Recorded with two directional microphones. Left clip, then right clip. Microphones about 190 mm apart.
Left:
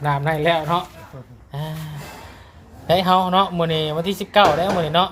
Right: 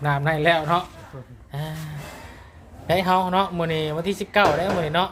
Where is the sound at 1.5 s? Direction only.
Centre (ahead or behind).